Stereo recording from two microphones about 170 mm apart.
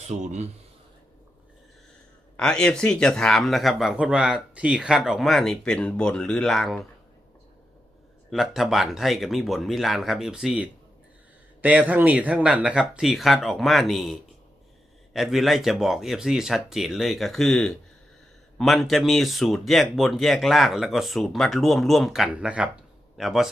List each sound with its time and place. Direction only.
0.0 s a man's voice: 45° right (ahead or behind)
2.3 s speech: 5° left (ahead or behind)
8.3 s speech: centre (ahead or behind)